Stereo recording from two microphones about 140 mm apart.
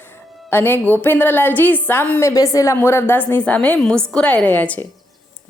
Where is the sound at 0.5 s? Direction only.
15° left (ahead or behind).